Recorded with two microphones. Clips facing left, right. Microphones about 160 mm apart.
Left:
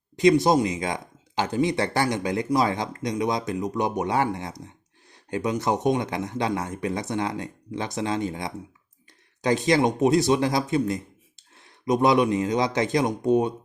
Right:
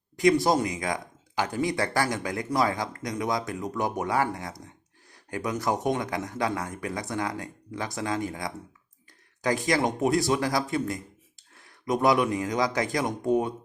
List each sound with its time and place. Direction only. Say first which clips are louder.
0.2 s speech: left 3 dB; 20° left (ahead or behind)